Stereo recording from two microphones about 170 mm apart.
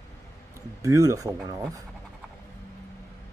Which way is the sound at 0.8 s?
20° right (ahead or behind).